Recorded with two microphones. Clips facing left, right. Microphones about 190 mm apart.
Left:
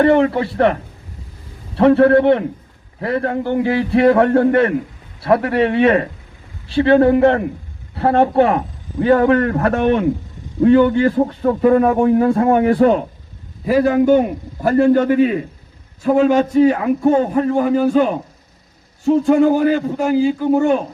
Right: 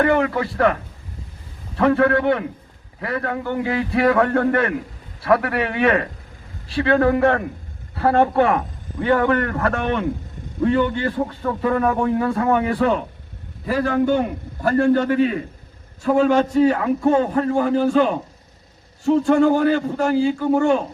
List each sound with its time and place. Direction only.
0.0 s a man's voice: 30° left (ahead or behind)
10.8 s a man's voice: 45° left (ahead or behind)
11.2 s a man's voice: 25° left (ahead or behind)
13.7 s a man's voice: 10° left (ahead or behind)
17.6 s a man's voice: 10° left (ahead or behind)
19.2 s a man's voice: 10° left (ahead or behind)